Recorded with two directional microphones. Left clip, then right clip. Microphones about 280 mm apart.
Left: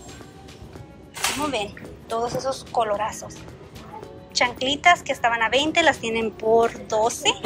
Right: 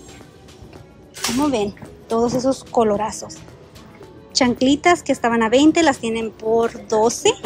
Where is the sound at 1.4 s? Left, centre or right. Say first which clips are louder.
Right 6 dB; centre.